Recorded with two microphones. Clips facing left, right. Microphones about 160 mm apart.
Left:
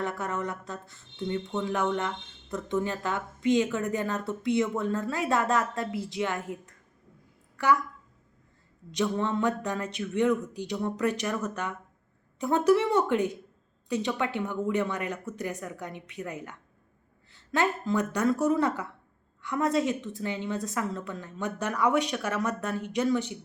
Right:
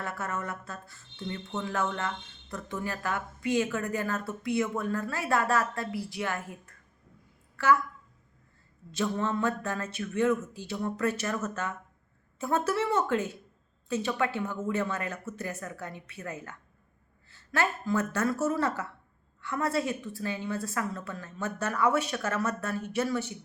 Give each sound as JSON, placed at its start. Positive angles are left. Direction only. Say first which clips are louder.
{"t": 0.0, "sound": "speech", "louder": "left 4 dB", "side_deg": 20}
{"t": 7.5, "sound": "a sound", "louder": "even", "side_deg": 15}
{"t": 8.9, "sound": "a woman's voice", "louder": "left 2 dB", "side_deg": 15}